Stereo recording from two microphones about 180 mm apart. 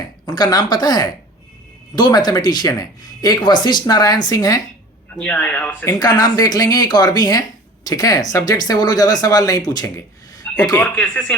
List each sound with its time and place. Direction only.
0.3 s speech: 20° left (ahead or behind)
5.1 s speech: 5° left (ahead or behind)
5.9 s speech: 20° left (ahead or behind)
10.8 s speech: 5° left (ahead or behind)